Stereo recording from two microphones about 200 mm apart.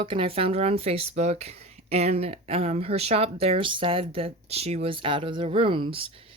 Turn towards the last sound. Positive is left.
turn(degrees=-25)  # may be behind; listen again after turning